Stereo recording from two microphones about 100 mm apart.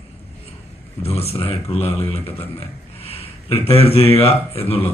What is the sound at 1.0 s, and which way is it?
Speech, 90° left.